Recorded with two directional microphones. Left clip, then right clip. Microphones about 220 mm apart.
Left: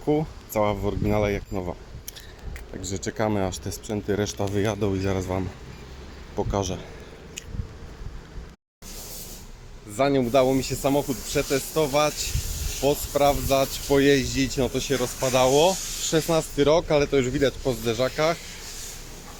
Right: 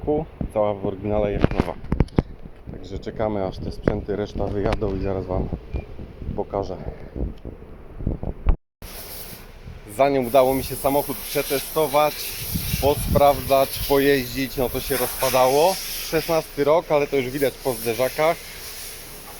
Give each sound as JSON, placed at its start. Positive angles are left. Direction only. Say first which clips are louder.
{"t": 0.1, "sound": "speech", "louder": "right 1 dB", "side_deg": 10}
{"t": 2.8, "sound": "speech", "louder": "right 1 dB", "side_deg": 15}
{"t": 9.9, "sound": "speech", "louder": "right 3 dB", "side_deg": 10}